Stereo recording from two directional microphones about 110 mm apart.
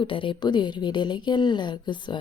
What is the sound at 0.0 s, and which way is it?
A woman's voice, 50° left (ahead or behind).